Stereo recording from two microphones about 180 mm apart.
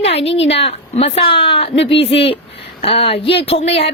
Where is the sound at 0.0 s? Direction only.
35° left (ahead or behind).